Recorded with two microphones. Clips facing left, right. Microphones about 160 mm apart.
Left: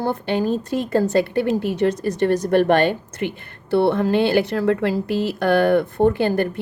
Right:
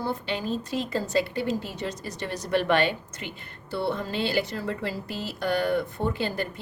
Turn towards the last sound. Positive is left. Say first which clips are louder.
# left 11 dB
turn(degrees=55)  # may be behind; listen again after turning